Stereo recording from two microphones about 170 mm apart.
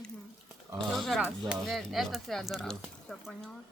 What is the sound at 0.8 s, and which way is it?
Speech, centre (ahead or behind).